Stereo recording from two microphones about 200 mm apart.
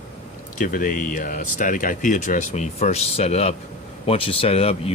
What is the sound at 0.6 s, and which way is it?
Speech, 40° left (ahead or behind).